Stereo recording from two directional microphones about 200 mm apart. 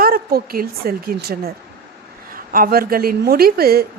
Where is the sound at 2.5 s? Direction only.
45° right (ahead or behind).